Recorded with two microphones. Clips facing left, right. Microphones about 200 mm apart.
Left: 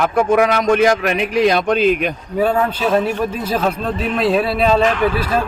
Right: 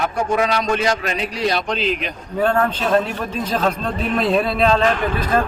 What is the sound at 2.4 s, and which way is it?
Speech, 10° left (ahead or behind).